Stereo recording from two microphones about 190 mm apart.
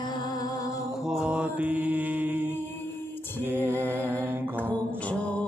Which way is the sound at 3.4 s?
10° right (ahead or behind).